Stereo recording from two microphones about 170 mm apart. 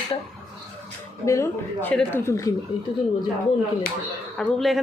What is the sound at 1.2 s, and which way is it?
A woman's voice, 15° left (ahead or behind).